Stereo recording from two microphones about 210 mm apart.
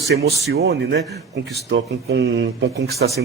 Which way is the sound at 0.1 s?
55° right (ahead or behind).